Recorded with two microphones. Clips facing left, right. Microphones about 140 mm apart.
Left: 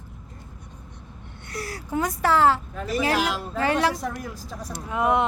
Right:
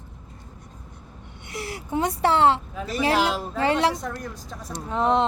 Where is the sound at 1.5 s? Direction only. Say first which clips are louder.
Right 1 dB; 20° right (ahead or behind).